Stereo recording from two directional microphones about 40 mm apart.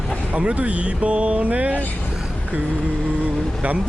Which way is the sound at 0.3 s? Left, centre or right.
Right.